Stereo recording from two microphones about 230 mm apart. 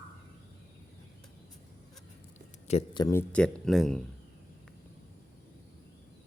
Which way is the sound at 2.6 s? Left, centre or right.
Left.